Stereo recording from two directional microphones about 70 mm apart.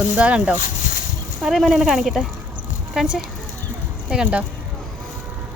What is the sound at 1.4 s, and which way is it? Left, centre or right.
A woman's voice, centre.